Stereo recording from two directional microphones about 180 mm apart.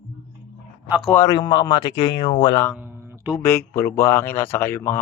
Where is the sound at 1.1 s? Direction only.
15° left (ahead or behind).